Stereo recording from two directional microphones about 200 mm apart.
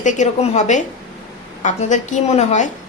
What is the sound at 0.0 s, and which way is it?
Speech, 35° left (ahead or behind).